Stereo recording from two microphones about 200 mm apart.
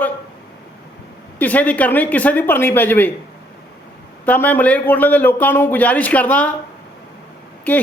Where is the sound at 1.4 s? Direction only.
10° left (ahead or behind).